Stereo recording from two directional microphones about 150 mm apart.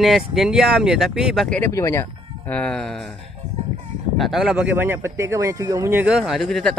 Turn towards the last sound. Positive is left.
turn(degrees=5)  # may be behind; listen again after turning